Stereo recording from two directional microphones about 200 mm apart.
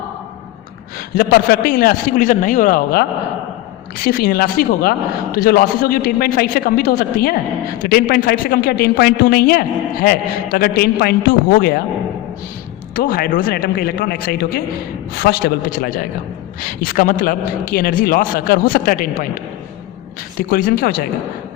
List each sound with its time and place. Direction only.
1.1 s a man's voice: 50° left (ahead or behind)
13.0 s a man's voice: 45° left (ahead or behind)
20.5 s a man's voice: 45° left (ahead or behind)